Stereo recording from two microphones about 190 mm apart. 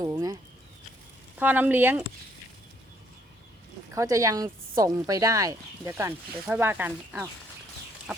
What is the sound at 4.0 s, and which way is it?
Speech, 15° right (ahead or behind).